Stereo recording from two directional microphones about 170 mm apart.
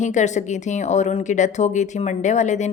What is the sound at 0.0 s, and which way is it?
A woman's voice, 45° left (ahead or behind).